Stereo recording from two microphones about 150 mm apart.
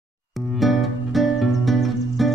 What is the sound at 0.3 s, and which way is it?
Music, centre (ahead or behind).